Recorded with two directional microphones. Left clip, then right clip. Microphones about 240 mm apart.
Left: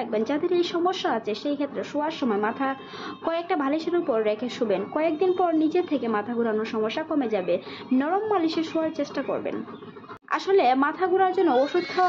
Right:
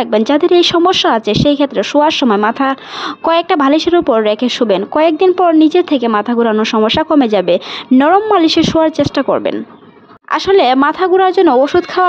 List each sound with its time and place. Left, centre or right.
0.0 s a woman's voice: right